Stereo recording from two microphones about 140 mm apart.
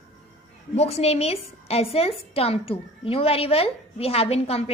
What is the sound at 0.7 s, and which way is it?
A woman's voice, 45° left (ahead or behind).